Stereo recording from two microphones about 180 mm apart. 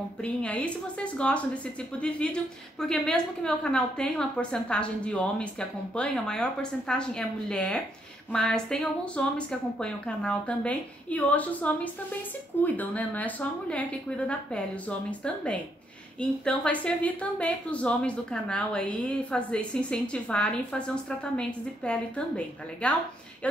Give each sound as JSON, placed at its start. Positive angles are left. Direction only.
{"t": 0.2, "sound": "a woman's voice", "side_deg": 5}